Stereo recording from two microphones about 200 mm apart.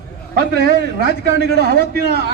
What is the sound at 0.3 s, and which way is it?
A man's voice, 50° right (ahead or behind).